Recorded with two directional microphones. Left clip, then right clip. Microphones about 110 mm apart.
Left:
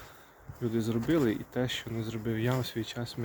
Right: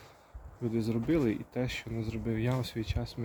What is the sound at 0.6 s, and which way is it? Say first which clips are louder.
Speech: left 1 dB; 25° right (ahead or behind).